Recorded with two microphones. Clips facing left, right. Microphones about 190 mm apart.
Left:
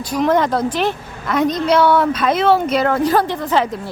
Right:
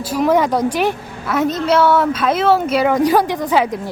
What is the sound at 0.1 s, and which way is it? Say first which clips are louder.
A woman's voice: right 1 dB; 10° right (ahead or behind).